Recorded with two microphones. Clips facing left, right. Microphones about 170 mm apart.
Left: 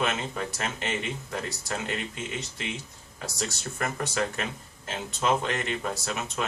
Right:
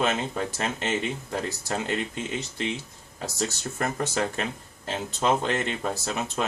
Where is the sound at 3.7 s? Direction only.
35° right (ahead or behind).